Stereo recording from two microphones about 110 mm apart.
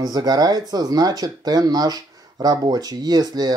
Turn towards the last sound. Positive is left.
turn(degrees=-35)  # may be behind; listen again after turning